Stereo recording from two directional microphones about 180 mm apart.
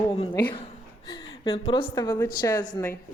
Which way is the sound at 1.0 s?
20° left (ahead or behind).